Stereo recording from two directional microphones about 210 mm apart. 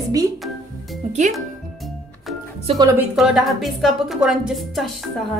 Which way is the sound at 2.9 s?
5° right (ahead or behind).